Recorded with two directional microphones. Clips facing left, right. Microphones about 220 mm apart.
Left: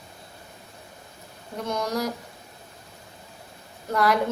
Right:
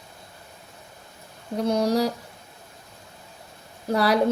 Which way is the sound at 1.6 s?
35° right (ahead or behind).